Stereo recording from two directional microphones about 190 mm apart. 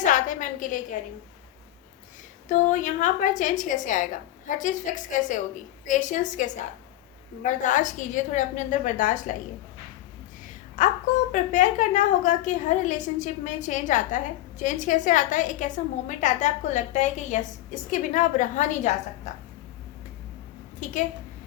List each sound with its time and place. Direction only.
0.0 s a sound: 45° left (ahead or behind)
2.5 s a woman's voice: 40° left (ahead or behind)
10.8 s a woman's voice: 40° left (ahead or behind)
20.8 s a woman's voice: 40° left (ahead or behind)